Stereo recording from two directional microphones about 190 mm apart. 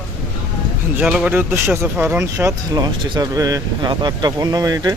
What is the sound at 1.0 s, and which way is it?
Speech, 5° right (ahead or behind).